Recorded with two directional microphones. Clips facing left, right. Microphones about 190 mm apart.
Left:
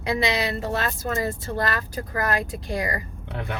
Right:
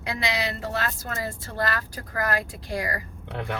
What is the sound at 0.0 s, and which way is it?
Speech, 20° left (ahead or behind).